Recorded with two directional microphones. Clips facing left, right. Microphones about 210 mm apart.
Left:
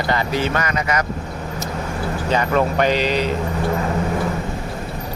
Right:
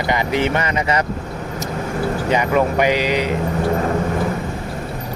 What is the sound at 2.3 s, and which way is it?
Speech, 15° right (ahead or behind).